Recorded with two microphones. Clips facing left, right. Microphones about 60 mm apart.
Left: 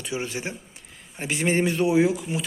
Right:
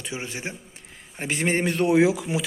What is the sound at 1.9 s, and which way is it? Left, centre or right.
Speech, right.